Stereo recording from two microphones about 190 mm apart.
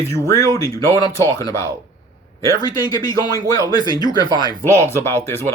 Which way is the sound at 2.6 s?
20° left (ahead or behind).